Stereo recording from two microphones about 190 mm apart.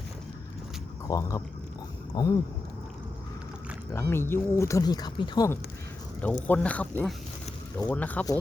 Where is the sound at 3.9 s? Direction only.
10° left (ahead or behind).